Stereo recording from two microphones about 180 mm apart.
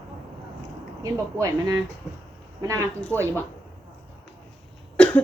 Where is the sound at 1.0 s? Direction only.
20° right (ahead or behind).